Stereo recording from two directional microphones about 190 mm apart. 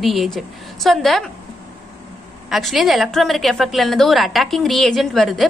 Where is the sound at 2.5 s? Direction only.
Centre (ahead or behind).